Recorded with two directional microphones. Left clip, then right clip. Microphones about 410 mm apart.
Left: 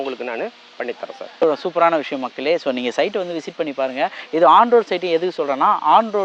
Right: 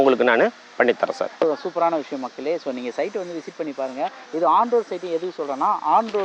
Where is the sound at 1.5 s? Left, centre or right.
Left.